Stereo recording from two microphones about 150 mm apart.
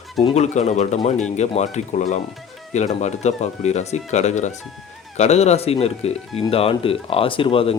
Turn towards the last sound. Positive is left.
turn(degrees=40)  # may be behind; listen again after turning